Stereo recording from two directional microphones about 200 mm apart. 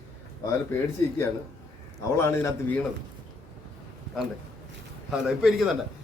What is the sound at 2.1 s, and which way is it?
Speech, 10° left (ahead or behind).